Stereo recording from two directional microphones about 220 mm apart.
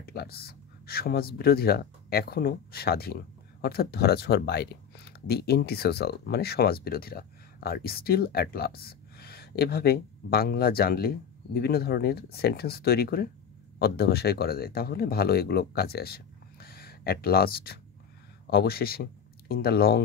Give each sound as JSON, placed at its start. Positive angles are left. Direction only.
{"t": 0.0, "sound": "speech", "side_deg": 45}